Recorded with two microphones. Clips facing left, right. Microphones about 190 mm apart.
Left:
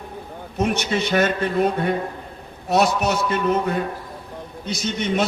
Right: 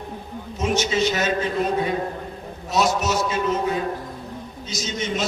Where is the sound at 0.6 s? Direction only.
60° left (ahead or behind).